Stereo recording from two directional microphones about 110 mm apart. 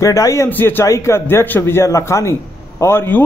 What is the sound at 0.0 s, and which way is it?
A man's voice, 30° left (ahead or behind).